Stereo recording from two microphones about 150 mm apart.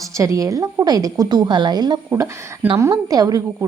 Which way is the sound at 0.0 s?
20° right (ahead or behind).